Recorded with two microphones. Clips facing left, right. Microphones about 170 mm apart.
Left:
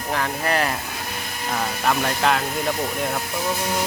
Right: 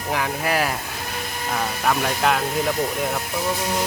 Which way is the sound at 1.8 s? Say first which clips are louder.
Even; centre (ahead or behind).